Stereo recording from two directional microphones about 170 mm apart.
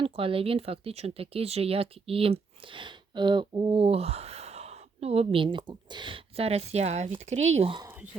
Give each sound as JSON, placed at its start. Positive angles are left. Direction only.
{"t": 0.0, "sound": "speech", "side_deg": -30}